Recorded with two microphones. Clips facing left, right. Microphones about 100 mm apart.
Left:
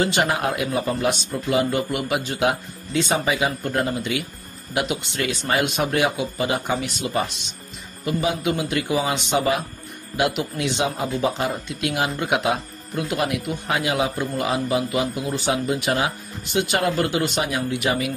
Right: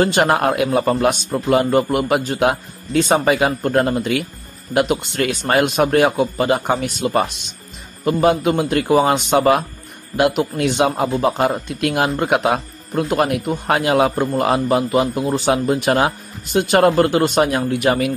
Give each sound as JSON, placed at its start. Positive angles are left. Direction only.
{"t": 0.0, "sound": "speech", "side_deg": -50}